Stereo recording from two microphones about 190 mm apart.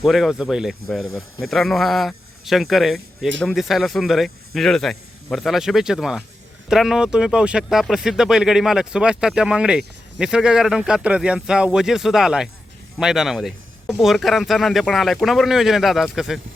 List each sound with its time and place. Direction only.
0.0 s speech: centre (ahead or behind)